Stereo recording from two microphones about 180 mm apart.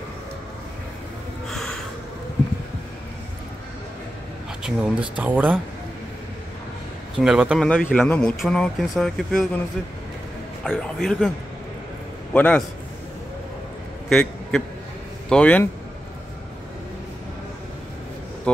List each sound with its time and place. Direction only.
1.5 s a sound: centre (ahead or behind)
4.6 s speech: 5° right (ahead or behind)
7.2 s speech: 5° right (ahead or behind)
10.6 s speech: centre (ahead or behind)
12.4 s speech: 10° left (ahead or behind)
14.0 s a sound: 5° left (ahead or behind)
15.2 s speech: 5° left (ahead or behind)